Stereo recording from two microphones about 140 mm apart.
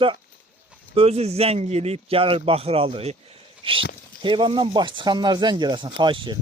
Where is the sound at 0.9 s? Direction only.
45° right (ahead or behind).